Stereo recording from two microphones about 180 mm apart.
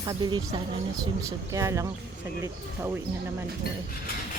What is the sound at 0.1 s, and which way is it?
Speech, 25° right (ahead or behind).